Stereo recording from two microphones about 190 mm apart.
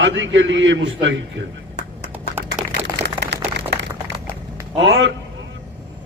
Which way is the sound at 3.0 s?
65° right (ahead or behind).